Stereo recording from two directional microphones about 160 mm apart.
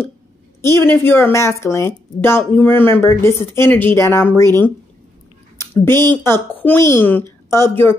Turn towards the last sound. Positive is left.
turn(degrees=15)  # may be behind; listen again after turning